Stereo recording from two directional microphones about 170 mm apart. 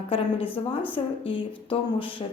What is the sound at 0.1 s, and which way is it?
Speech, 35° left (ahead or behind).